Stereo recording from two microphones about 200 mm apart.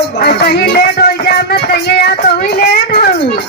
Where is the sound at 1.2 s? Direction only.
50° left (ahead or behind).